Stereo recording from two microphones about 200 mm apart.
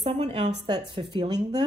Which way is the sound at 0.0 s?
30° right (ahead or behind).